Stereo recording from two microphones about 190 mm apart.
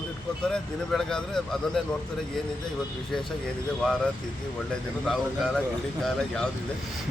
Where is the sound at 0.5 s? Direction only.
5° left (ahead or behind).